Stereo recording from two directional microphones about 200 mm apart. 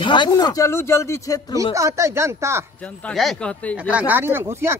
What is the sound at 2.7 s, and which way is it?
Speech, 5° left (ahead or behind).